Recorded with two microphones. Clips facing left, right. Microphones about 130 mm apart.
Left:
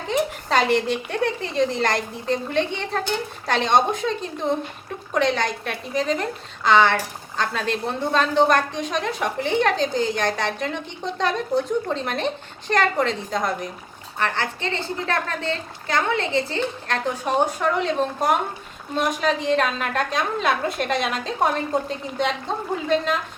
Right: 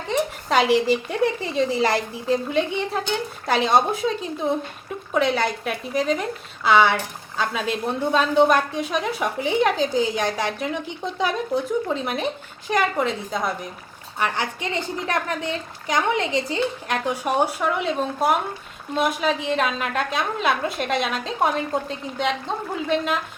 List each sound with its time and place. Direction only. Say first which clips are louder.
0.1 s a woman's voice: even; 5° right (ahead or behind)